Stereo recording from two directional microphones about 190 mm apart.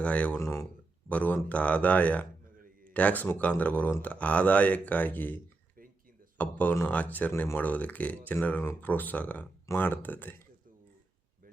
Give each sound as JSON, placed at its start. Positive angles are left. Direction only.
{"t": 0.0, "sound": "speech", "side_deg": 5}